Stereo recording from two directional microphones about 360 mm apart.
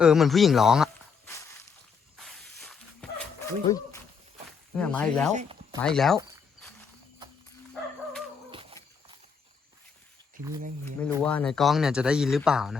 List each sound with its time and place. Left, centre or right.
0.0 s a sound: centre
4.8 s speech: centre
5.3 s speech: centre
5.8 s speech: centre
8.4 s a sound: centre
11.0 s speech: centre